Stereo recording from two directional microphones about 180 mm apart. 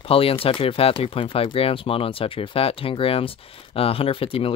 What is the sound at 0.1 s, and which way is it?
Speech, 30° left (ahead or behind).